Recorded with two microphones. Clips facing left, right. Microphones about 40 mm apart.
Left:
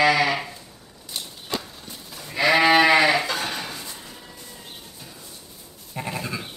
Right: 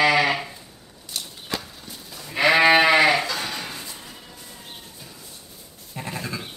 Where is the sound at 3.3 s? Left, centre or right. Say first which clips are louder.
Left 1 dB; left.